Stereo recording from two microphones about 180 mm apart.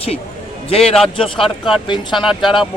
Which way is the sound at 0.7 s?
35° left (ahead or behind).